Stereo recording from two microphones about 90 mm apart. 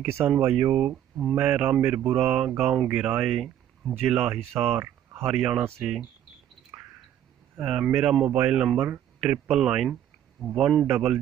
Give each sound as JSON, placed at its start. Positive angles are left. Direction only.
{"t": 0.0, "sound": "speech", "side_deg": -30}
{"t": 0.4, "sound": "speech", "side_deg": -15}
{"t": 7.6, "sound": "speech", "side_deg": -10}
{"t": 10.4, "sound": "speech", "side_deg": 5}